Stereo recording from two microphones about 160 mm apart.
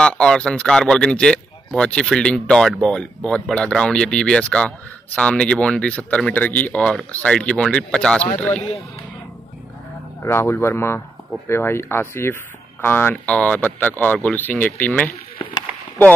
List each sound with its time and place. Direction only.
0.0 s speech: 5° left (ahead or behind)
10.2 s speech: 15° left (ahead or behind)